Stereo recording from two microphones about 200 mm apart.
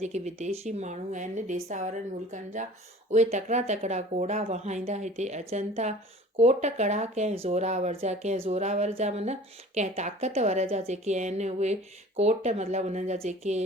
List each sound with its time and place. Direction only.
0.0 s speech: 35° right (ahead or behind)